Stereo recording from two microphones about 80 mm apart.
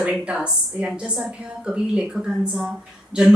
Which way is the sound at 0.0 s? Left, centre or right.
Centre.